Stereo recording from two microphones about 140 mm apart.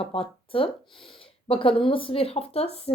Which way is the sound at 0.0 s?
40° left (ahead or behind).